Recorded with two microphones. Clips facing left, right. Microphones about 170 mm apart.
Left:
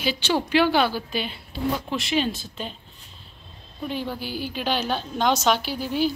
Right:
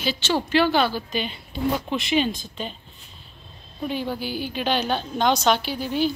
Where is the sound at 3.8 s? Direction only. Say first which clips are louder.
Right 2 dB; centre (ahead or behind).